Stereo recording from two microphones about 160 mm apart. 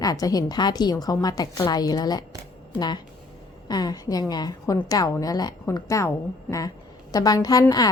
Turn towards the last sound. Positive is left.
turn(degrees=25)  # may be behind; listen again after turning